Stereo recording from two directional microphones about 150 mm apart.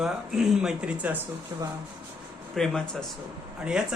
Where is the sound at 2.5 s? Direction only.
5° left (ahead or behind).